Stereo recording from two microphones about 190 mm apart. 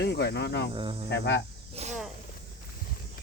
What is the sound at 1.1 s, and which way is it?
Speech, 70° left (ahead or behind).